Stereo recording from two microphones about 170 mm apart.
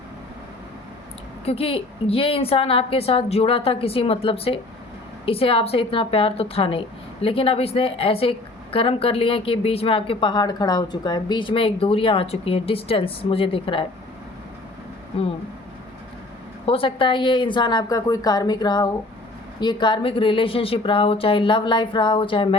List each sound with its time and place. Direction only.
1.5 s a woman's voice: 35° left (ahead or behind)
16.6 s a woman's voice: 30° left (ahead or behind)